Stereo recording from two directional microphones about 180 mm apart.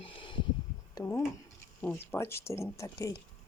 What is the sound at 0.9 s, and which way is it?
Speech, 15° left (ahead or behind).